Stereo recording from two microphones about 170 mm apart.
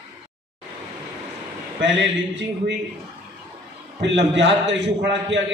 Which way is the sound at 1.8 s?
90° right.